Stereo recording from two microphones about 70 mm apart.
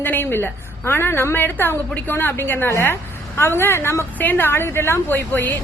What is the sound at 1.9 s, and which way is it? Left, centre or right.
Speech, centre.